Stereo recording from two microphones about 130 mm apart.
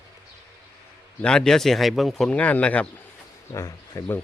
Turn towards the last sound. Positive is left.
turn(degrees=20)  # may be behind; listen again after turning